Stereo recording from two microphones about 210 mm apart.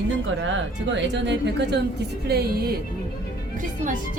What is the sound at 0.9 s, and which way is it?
Speech, 55° right (ahead or behind).